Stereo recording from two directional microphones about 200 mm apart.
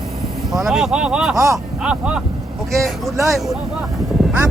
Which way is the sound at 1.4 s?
15° right (ahead or behind).